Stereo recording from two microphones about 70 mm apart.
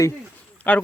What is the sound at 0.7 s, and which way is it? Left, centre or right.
Speech, left.